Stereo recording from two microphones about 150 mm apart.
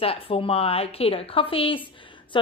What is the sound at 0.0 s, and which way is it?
Speech, 40° left (ahead or behind).